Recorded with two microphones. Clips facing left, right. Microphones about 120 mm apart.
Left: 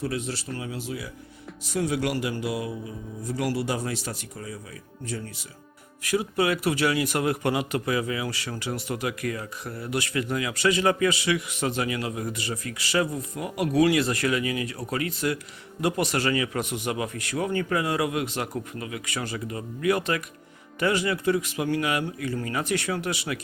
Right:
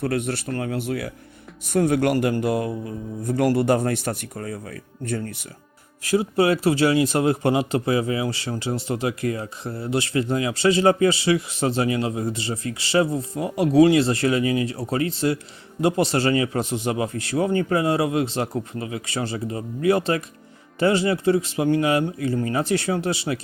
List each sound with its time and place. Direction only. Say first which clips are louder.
0.0 s speech: right 6 dB; 60° right (ahead or behind)
6.0 s speech: right 5 dB; 30° right (ahead or behind)